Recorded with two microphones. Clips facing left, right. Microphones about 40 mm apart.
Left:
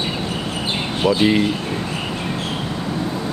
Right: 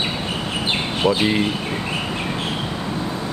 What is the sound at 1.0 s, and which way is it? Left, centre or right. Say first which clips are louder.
Speech: left 1 dB; right.